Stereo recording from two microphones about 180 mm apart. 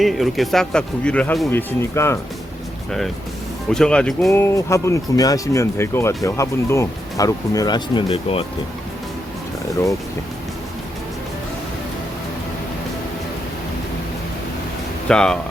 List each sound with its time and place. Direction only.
0.0 s speech: centre (ahead or behind)
3.7 s speech: 5° left (ahead or behind)
4.3 s speech: 15° left (ahead or behind); by 8.4 s 30° left (ahead or behind)
15.0 s speech: 5° left (ahead or behind)